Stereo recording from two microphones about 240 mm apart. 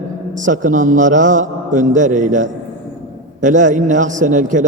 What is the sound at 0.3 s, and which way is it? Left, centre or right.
A man's voice, right.